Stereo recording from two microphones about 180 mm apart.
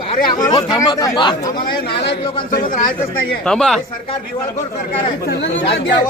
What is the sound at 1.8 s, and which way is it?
Speech, 70° left (ahead or behind).